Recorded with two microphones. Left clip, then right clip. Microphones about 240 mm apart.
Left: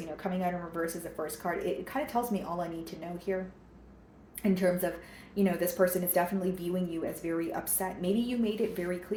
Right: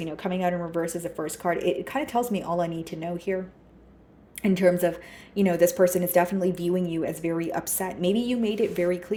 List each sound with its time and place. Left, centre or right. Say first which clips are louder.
0.2 s speech: right 7 dB; right
4.4 s speech: right 7 dB; right